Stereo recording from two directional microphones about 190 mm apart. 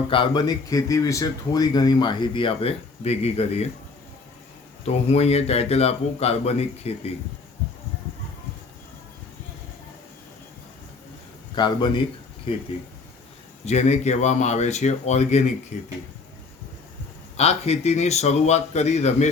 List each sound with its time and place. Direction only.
0.1 s speech: 25° left (ahead or behind)
4.9 s speech: 35° left (ahead or behind)
11.5 s speech: 25° left (ahead or behind)
13.7 s speech: 35° left (ahead or behind)
17.3 s speech: 35° left (ahead or behind)